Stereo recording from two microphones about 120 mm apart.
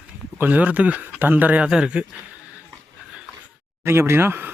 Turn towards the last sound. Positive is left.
turn(degrees=-20)  # may be behind; listen again after turning